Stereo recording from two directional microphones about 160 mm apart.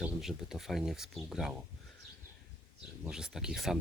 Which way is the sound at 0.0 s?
Centre (ahead or behind).